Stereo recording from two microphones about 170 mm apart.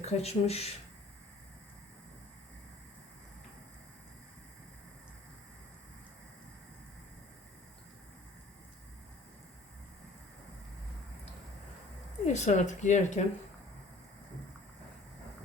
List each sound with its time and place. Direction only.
0.0 s speech: 40° left (ahead or behind)
12.2 s speech: 45° left (ahead or behind)